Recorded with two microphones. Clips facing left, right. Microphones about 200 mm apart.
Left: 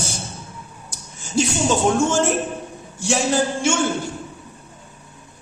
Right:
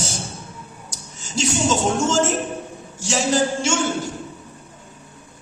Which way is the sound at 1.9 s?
55° left (ahead or behind).